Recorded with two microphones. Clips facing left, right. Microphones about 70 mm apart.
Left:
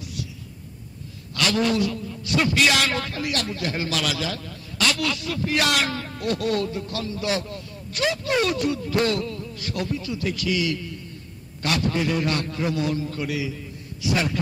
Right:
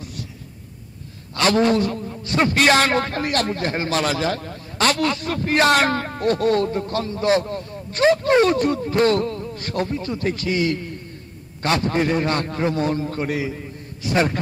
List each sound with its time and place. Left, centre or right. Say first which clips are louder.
0.0 s heart sounds: even; right
1.3 s a man's voice: right 5 dB; right